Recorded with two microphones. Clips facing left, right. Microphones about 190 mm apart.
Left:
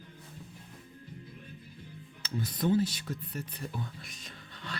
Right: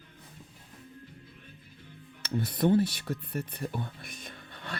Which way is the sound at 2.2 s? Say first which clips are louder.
Right 5 dB; 60° right (ahead or behind).